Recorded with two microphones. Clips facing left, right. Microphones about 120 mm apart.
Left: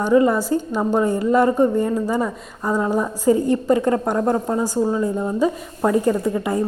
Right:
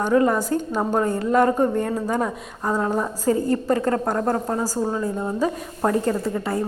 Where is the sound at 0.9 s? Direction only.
10° left (ahead or behind).